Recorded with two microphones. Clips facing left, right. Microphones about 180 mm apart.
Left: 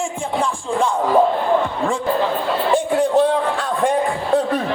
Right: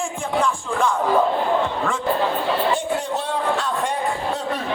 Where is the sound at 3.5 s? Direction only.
50° left (ahead or behind).